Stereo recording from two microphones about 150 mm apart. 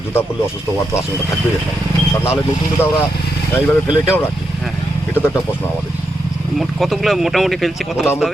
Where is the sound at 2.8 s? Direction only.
15° left (ahead or behind).